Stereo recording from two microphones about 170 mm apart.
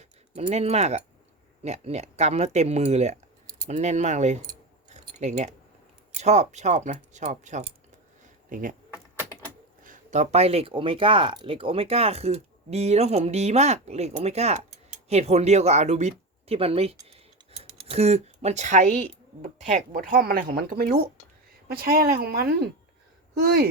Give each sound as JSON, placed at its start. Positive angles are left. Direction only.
{"t": 0.0, "sound": "speech", "side_deg": -40}
{"t": 9.8, "sound": "speech", "side_deg": -45}
{"t": 17.1, "sound": "computer keyboard", "side_deg": -35}
{"t": 19.9, "sound": "speech", "side_deg": -55}